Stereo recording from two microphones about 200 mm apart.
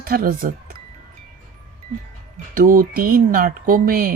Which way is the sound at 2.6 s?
45° right (ahead or behind).